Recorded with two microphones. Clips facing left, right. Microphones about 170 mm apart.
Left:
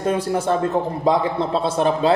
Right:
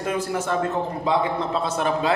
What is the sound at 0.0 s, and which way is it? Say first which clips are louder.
A man's voice: left 5 dB; 30° left (ahead or behind).